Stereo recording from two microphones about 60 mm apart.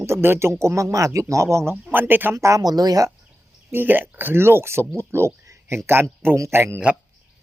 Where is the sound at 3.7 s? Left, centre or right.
Right.